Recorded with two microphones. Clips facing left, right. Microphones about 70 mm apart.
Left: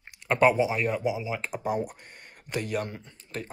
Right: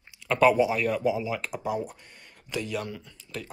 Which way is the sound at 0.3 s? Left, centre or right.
Left.